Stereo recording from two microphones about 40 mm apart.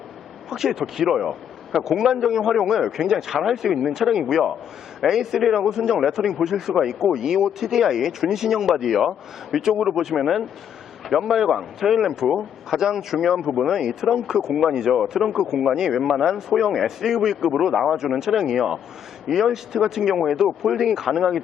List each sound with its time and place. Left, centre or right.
0.5 s speech: centre